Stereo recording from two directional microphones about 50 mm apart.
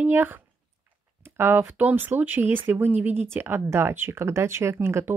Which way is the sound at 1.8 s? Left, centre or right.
Right.